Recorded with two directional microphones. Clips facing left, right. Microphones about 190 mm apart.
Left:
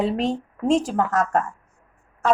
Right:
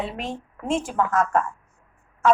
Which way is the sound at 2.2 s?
35° left (ahead or behind).